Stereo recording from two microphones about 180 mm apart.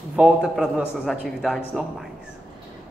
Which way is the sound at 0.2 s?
Centre (ahead or behind).